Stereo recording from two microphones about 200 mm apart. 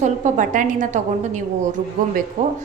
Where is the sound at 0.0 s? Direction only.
40° right (ahead or behind).